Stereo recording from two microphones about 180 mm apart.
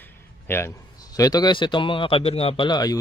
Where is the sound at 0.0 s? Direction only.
15° left (ahead or behind).